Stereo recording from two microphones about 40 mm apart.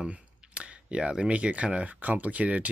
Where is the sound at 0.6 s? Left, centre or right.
Right.